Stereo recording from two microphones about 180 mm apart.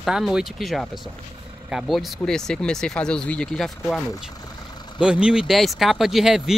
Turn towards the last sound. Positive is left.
turn(degrees=0)  # may be behind; listen again after turning